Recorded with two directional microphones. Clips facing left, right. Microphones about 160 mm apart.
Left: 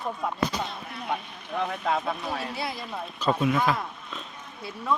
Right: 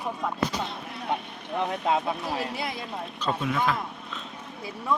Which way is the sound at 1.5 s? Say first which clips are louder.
Right 2 dB; 20° right (ahead or behind).